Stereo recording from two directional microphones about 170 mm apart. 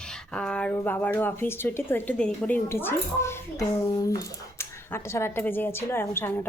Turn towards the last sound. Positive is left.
turn(degrees=15)  # may be behind; listen again after turning